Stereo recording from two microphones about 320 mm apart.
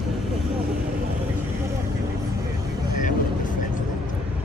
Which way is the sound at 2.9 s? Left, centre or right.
Left.